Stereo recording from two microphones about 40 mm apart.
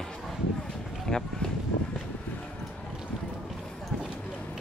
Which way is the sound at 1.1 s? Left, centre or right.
Centre.